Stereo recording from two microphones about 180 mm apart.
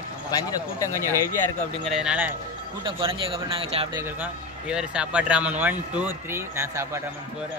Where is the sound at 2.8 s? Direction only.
30° right (ahead or behind).